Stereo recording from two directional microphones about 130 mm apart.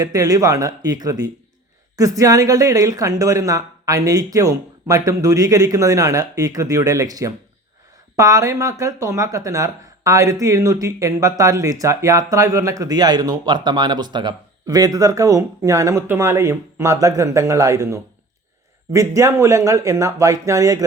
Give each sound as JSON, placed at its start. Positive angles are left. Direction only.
{"t": 0.0, "sound": "speech", "side_deg": -25}